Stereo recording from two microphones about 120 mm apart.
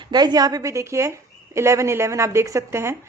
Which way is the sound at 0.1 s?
35° right (ahead or behind).